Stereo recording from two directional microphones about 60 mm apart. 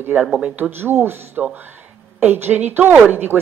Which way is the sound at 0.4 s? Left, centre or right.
Right.